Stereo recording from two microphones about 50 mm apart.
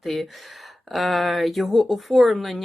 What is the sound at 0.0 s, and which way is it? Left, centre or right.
Speech, centre.